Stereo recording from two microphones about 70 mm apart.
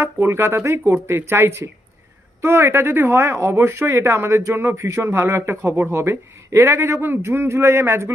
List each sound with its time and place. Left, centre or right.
0.0 s speech: right